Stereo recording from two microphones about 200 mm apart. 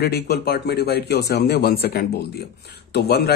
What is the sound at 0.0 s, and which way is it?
A man's voice, 55° left (ahead or behind).